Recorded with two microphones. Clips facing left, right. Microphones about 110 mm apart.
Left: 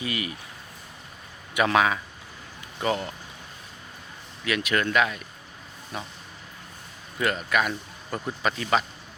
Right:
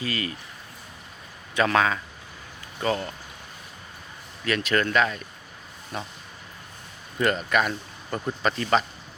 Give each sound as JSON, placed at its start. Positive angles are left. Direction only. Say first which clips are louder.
{"t": 0.0, "sound": "speech", "louder": "right 1 dB", "side_deg": 15}
{"t": 1.5, "sound": "speech", "louder": "even", "side_deg": 15}
{"t": 4.4, "sound": "speech", "louder": "right 1 dB", "side_deg": 10}
{"t": 7.2, "sound": "speech", "louder": "right 2 dB", "side_deg": 0}